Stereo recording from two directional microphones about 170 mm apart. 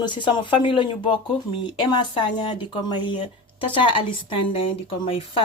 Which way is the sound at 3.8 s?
30° left (ahead or behind).